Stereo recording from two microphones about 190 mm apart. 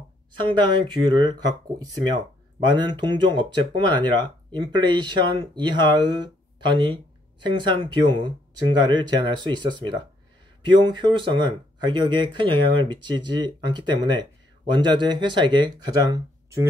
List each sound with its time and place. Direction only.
0.4 s speech: 25° right (ahead or behind)